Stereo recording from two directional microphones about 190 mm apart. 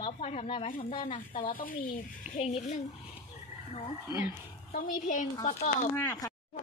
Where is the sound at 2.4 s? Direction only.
35° left (ahead or behind).